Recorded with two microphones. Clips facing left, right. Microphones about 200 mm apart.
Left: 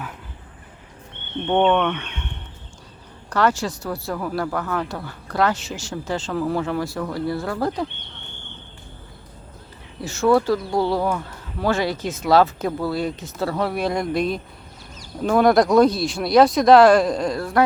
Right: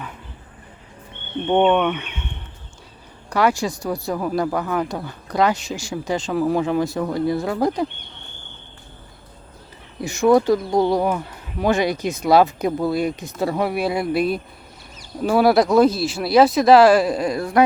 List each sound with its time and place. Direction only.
1.5 s speech: 10° right (ahead or behind)
3.2 s speech: 10° right (ahead or behind)
10.0 s speech: 15° right (ahead or behind)